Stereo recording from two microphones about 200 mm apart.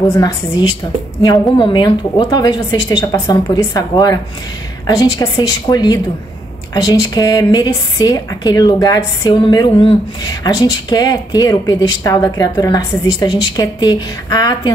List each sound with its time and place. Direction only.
0.1 s speech: 20° left (ahead or behind)